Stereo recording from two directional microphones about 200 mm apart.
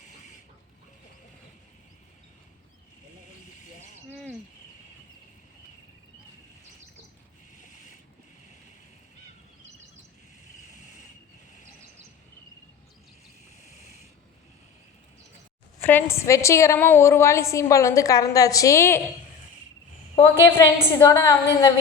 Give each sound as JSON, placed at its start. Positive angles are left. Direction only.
{"t": 7.5, "sound": "boat", "side_deg": 40}
{"t": 15.8, "sound": "a woman's voice", "side_deg": 10}
{"t": 20.2, "sound": "a woman's voice", "side_deg": 10}